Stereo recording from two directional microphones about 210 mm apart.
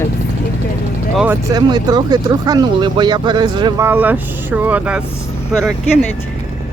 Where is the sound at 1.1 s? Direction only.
5° right (ahead or behind).